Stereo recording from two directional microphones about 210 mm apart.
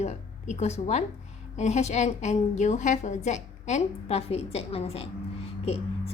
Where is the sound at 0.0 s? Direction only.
35° left (ahead or behind).